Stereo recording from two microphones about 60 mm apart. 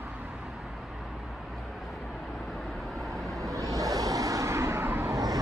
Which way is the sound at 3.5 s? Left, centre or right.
Right.